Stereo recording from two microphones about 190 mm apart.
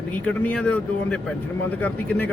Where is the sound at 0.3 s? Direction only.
5° left (ahead or behind).